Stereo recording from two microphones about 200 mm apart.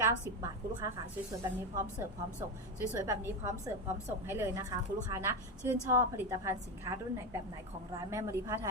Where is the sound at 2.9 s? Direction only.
15° right (ahead or behind).